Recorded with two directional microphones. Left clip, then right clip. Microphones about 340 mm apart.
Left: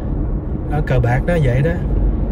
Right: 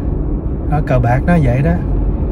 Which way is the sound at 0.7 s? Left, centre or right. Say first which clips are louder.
Right 4 dB; right.